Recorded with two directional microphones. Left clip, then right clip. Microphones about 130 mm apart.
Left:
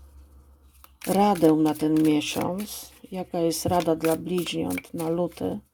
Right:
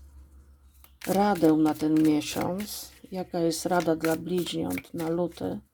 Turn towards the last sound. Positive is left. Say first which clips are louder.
# left 2 dB
turn(degrees=20)  # may be behind; listen again after turning